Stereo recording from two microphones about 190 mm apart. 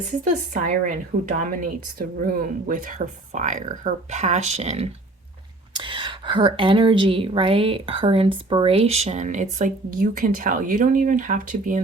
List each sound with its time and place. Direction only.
0.3 s a woman's voice: 45° right (ahead or behind)